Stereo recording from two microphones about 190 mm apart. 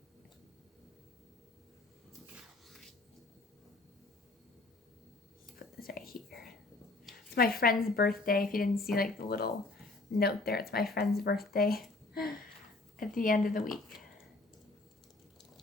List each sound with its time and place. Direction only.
5.5 s whispering: 50° left (ahead or behind)
6.2 s whispering: centre (ahead or behind)
7.3 s speech: 50° left (ahead or behind)
13.0 s speech: 45° left (ahead or behind)